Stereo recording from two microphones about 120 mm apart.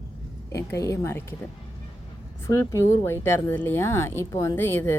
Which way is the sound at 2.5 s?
25° left (ahead or behind).